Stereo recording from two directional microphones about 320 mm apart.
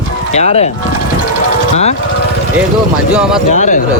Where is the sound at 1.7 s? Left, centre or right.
Left.